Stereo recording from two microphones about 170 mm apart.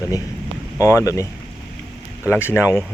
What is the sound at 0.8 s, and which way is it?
Speech, 20° left (ahead or behind).